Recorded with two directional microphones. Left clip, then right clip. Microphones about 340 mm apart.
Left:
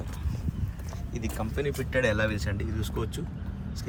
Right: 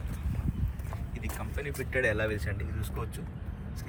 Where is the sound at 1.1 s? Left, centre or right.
Centre.